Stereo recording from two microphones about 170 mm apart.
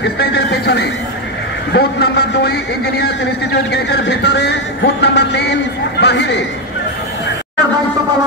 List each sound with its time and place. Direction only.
0.0 s vehicle: 75° left (ahead or behind)
1.7 s a man's voice: 75° left (ahead or behind)
3.7 s vehicle: 80° left
5.9 s speech: 85° left